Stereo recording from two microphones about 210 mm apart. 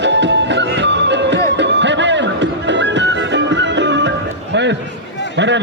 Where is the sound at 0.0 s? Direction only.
55° right (ahead or behind).